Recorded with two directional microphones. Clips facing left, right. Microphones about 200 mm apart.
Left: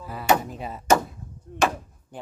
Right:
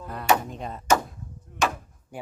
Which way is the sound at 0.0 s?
5° left (ahead or behind).